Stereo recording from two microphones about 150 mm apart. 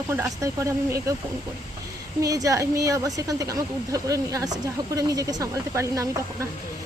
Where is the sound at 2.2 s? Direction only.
25° right (ahead or behind).